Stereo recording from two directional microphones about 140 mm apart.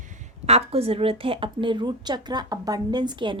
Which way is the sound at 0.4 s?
45° right (ahead or behind).